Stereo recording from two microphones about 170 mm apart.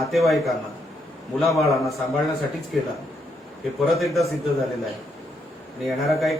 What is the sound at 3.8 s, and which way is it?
Speech, centre (ahead or behind).